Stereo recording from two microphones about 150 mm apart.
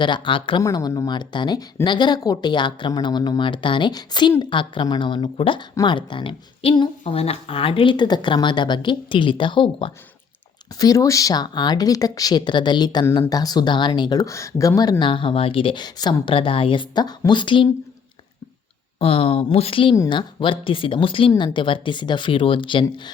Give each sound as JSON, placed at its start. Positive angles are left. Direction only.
{"t": 0.0, "sound": "speech", "side_deg": 30}
{"t": 10.8, "sound": "speech", "side_deg": 25}
{"t": 18.9, "sound": "speech", "side_deg": 40}